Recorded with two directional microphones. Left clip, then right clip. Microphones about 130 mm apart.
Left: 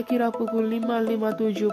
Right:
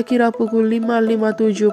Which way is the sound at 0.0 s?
35° right (ahead or behind).